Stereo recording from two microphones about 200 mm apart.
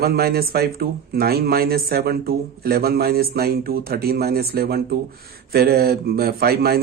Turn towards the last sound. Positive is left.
turn(degrees=-50)  # may be behind; listen again after turning